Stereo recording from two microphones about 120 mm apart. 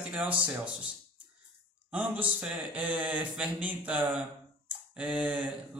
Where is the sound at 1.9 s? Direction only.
15° right (ahead or behind).